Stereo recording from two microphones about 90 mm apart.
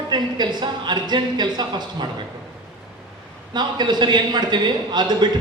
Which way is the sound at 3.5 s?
55° right (ahead or behind).